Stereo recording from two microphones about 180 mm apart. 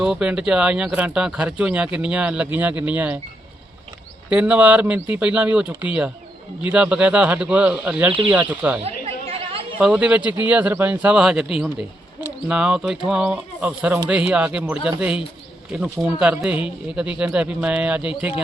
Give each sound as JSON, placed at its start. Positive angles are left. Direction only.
{"t": 0.0, "sound": "speech", "side_deg": -5}
{"t": 4.3, "sound": "speech", "side_deg": -5}
{"t": 8.8, "sound": "chatter", "side_deg": -35}
{"t": 9.8, "sound": "speech", "side_deg": -5}